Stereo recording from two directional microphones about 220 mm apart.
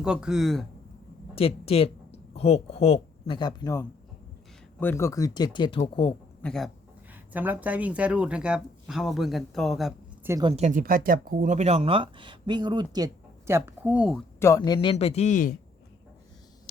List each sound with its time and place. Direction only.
0.0 s speech: 5° right (ahead or behind)
1.4 s speech: 25° left (ahead or behind)
6.4 s a man's voice: centre (ahead or behind)
7.1 s speech: 10° right (ahead or behind)
10.2 s speech: 15° right (ahead or behind)
10.5 s speech: 35° right (ahead or behind); by 14.2 s 5° right (ahead or behind)
14.3 s speech: 15° left (ahead or behind); by 15.5 s 35° left (ahead or behind)